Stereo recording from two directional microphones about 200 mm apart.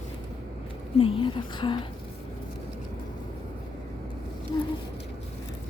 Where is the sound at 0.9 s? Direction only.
25° left (ahead or behind).